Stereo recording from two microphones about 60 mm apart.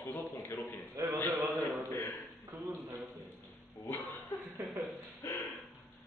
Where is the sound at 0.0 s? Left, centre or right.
Left.